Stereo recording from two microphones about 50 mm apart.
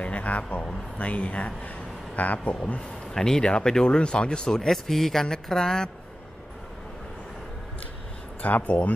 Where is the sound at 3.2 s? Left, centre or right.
Centre.